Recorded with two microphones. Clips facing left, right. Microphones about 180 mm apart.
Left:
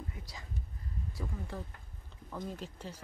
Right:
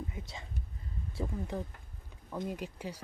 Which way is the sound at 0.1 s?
25° right (ahead or behind).